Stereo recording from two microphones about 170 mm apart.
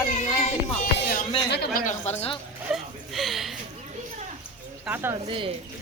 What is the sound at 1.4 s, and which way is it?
Speech, 75° left (ahead or behind).